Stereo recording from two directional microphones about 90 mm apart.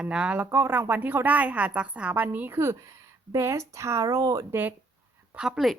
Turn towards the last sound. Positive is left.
turn(degrees=0)  # may be behind; listen again after turning